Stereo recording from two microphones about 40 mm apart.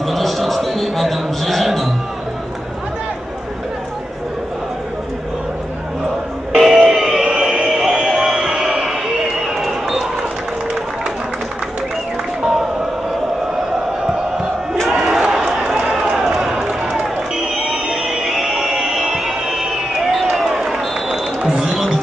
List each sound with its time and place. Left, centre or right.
0.0 s music: centre
6.5 s music: centre
7.3 s a sound: right
7.6 s music: centre
9.6 s run: centre
14.9 s crowd: centre
15.2 s run: centre
17.6 s music: centre